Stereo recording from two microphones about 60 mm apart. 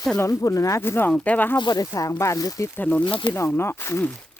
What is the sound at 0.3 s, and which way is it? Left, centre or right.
Speech, left.